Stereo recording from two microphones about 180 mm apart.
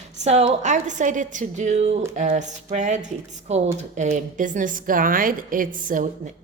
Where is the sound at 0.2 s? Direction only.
35° right (ahead or behind).